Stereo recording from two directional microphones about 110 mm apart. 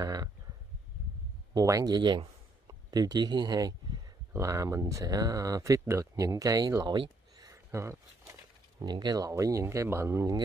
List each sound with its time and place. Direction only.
0.0 s speech: 35° right (ahead or behind)
1.5 s speech: 35° right (ahead or behind)
7.0 s a sound: 35° right (ahead or behind)
8.3 s speech: 40° right (ahead or behind)